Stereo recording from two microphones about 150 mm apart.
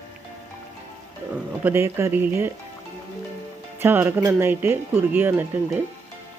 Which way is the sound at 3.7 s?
15° right (ahead or behind).